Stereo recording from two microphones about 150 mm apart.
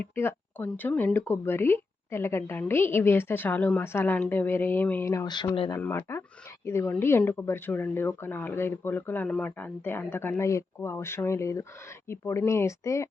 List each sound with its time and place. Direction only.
0.0 s speech: 15° left (ahead or behind)